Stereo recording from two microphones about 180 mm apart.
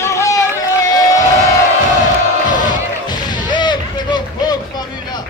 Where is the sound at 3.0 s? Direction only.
25° left (ahead or behind).